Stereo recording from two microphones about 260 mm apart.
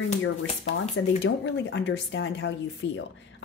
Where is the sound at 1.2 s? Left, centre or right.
Left.